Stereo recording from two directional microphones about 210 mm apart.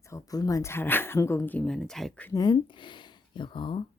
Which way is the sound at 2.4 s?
20° left (ahead or behind).